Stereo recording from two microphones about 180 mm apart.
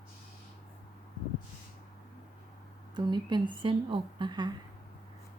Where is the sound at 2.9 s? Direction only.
25° right (ahead or behind).